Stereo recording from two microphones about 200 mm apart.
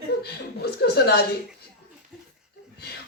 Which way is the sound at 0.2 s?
55° left (ahead or behind).